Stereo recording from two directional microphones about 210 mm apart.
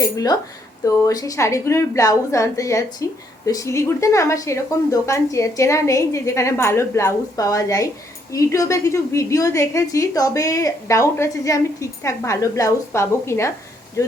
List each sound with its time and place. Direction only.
0.0 s a woman's voice: 15° left (ahead or behind)